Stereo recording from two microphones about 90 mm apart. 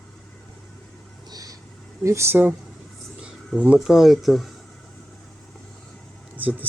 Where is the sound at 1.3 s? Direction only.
45° right (ahead or behind).